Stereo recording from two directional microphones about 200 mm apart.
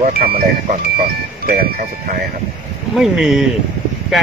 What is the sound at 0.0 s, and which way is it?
Speech, 45° right (ahead or behind).